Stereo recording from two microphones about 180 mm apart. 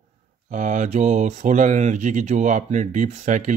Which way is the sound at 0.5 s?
40° right (ahead or behind).